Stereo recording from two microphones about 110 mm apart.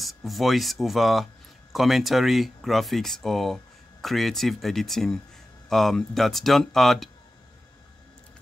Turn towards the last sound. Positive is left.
turn(degrees=0)  # may be behind; listen again after turning